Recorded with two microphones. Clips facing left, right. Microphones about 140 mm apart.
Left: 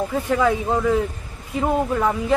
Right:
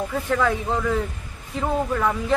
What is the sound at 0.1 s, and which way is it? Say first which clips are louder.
A man's voice: left 2 dB; 10° left (ahead or behind).